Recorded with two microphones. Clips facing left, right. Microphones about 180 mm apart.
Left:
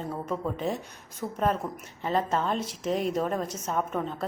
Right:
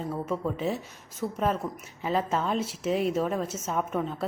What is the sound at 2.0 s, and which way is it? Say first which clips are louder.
A woman's voice: even; 5° right (ahead or behind).